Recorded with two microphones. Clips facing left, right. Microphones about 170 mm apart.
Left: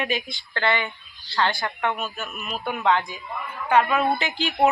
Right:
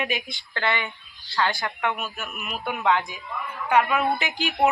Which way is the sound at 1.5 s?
20° left (ahead or behind).